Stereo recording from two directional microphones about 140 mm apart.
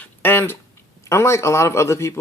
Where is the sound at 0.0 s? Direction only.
15° left (ahead or behind).